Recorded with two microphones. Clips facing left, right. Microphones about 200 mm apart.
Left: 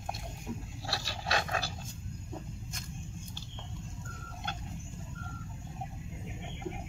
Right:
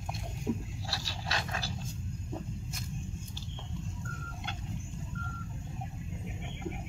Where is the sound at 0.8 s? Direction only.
60° left (ahead or behind).